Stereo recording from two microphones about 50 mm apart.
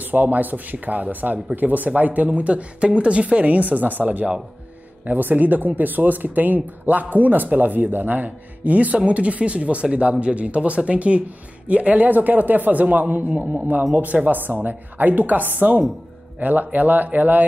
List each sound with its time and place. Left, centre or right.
0.0 s speech: right
13.3 s speech: right